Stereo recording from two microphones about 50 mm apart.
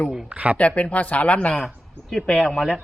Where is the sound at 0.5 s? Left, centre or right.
Left.